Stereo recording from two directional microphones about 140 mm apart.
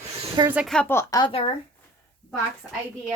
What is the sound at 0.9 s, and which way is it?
Speech, 20° left (ahead or behind).